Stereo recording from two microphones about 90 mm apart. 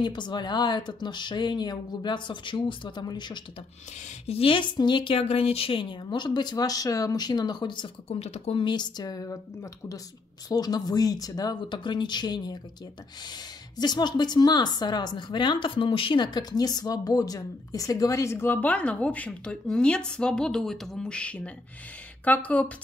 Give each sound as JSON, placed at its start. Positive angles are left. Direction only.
{"t": 0.0, "sound": "a woman's voice", "side_deg": 55}
{"t": 4.4, "sound": "a woman's voice", "side_deg": 70}
{"t": 11.7, "sound": "a woman's voice", "side_deg": 60}
{"t": 13.7, "sound": "a woman's voice", "side_deg": 50}